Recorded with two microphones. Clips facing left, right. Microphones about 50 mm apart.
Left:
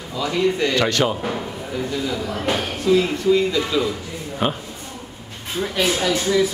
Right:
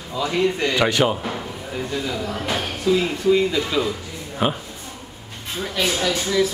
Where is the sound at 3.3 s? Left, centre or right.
Centre.